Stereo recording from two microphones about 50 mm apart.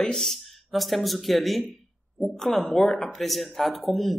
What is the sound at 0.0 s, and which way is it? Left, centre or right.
Speech, centre.